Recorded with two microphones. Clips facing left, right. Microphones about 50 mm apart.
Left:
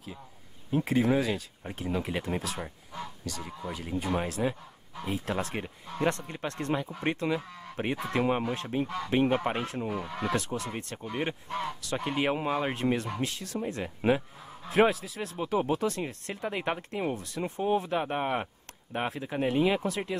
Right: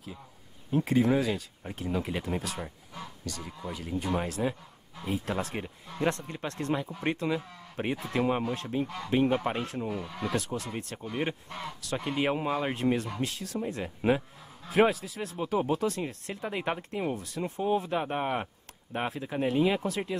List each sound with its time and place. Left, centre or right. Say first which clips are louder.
0.8 s speech: right 1 dB; centre; by 10.1 s left
10.3 s speech: right 1 dB; centre